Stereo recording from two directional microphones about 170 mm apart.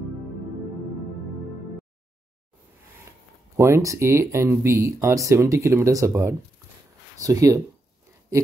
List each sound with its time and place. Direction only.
3.1 s speech: 15° right (ahead or behind)